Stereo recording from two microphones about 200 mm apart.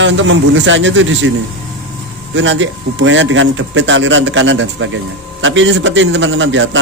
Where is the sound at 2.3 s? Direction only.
70° right (ahead or behind).